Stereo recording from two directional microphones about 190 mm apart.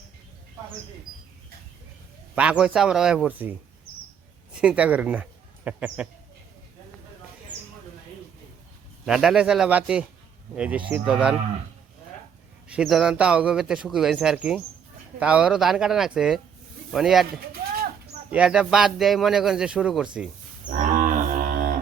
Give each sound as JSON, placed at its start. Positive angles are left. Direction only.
{"t": 2.3, "sound": "speech", "side_deg": -5}
{"t": 9.0, "sound": "speech", "side_deg": -5}
{"t": 12.6, "sound": "speech", "side_deg": -5}
{"t": 20.7, "sound": "cattle", "side_deg": -45}